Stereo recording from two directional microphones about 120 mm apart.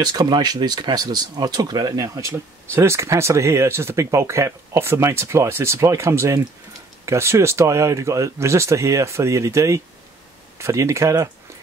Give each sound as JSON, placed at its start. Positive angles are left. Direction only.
{"t": 0.0, "sound": "speech", "side_deg": -35}